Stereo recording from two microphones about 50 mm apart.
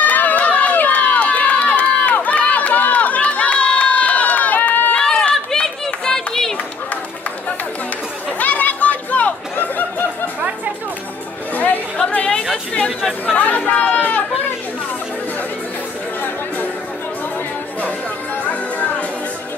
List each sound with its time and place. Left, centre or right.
0.0 s run: left
4.9 s run: centre
8.4 s chatter: left
11.5 s chatter: left
18.4 s music: left